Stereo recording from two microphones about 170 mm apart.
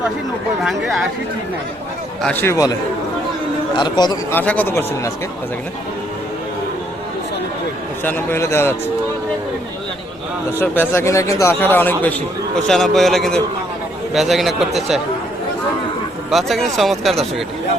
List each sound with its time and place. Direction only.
0.6 s speech: centre (ahead or behind)
2.2 s speech: 10° left (ahead or behind)
3.8 s a man's voice: 25° left (ahead or behind)
4.4 s speech: 10° left (ahead or behind)
8.0 s speech: 15° left (ahead or behind)
10.6 s speech: 15° left (ahead or behind)
16.3 s speech: centre (ahead or behind)